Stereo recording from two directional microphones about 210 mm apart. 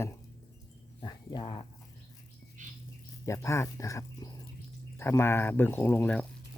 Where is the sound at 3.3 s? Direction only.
15° left (ahead or behind).